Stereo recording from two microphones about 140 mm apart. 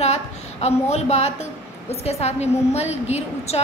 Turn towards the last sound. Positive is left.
turn(degrees=50)  # may be behind; listen again after turning